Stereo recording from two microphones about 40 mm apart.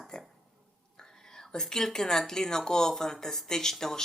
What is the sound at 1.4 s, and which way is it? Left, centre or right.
Speech, centre.